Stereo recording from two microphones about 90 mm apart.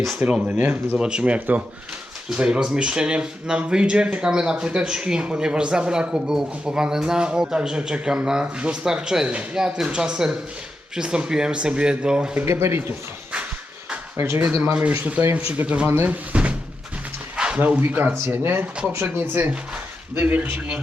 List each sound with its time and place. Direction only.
0.2 s speech: 15° right (ahead or behind)
12.5 s a man's voice: 30° right (ahead or behind)
14.2 s a man's voice: 25° right (ahead or behind)
15.9 s a man's voice: 25° right (ahead or behind)
16.3 s a sound: 15° right (ahead or behind)
17.3 s a man's voice: 10° right (ahead or behind)